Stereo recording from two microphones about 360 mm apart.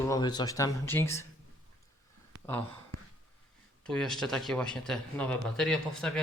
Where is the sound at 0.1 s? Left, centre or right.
Centre.